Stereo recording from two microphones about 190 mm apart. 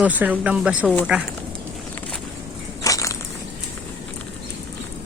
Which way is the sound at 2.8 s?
15° left (ahead or behind).